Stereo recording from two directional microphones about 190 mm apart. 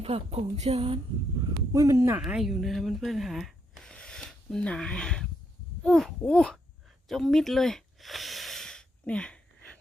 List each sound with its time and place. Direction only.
0.0 s speech: 30° right (ahead or behind)
1.7 s speech: 15° right (ahead or behind)
2.2 s speech: centre (ahead or behind)
7.1 s a sound: centre (ahead or behind)